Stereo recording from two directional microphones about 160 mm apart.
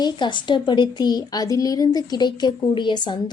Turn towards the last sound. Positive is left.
turn(degrees=30)  # may be behind; listen again after turning